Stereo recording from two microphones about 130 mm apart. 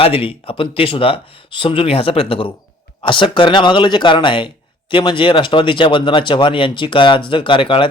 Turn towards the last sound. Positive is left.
turn(degrees=40)  # may be behind; listen again after turning